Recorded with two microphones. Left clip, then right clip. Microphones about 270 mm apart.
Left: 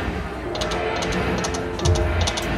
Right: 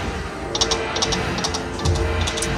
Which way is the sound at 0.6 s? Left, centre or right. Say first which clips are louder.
Right 3 dB; centre.